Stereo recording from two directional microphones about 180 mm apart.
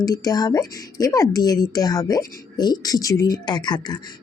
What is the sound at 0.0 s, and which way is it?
A woman's voice, 20° left (ahead or behind).